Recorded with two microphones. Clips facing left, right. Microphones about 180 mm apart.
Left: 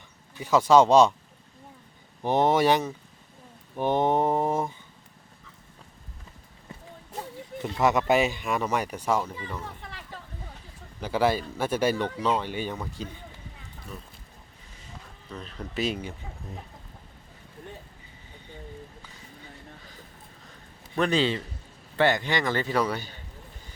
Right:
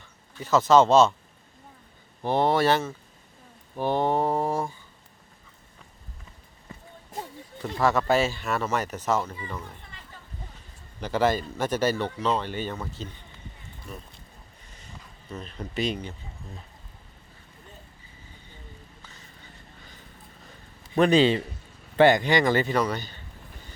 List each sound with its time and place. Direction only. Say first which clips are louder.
0.3 s speech: even; 10° left (ahead or behind)
2.2 s speech: left 1 dB; 20° left (ahead or behind)
3.8 s mantra: left 1 dB; 20° left (ahead or behind)
7.6 s speech: even; 20° left (ahead or behind)
11.0 s speech: right 1 dB; 10° left (ahead or behind)
15.3 s speech: right 1 dB; centre (ahead or behind)
20.9 s speech: right 5 dB; 15° right (ahead or behind)
22.6 s speech: right 1 dB; 5° left (ahead or behind)